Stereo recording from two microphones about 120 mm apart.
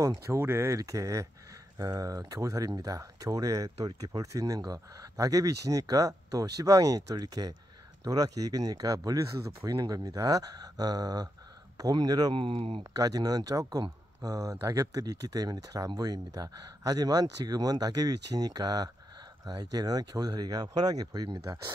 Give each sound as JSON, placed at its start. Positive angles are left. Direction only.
{"t": 0.0, "sound": "speech", "side_deg": -25}
{"t": 12.4, "sound": "speech", "side_deg": -50}
{"t": 12.9, "sound": "speech", "side_deg": -30}